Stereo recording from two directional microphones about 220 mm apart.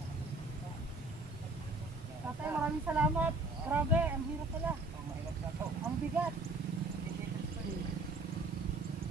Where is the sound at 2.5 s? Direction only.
10° right (ahead or behind).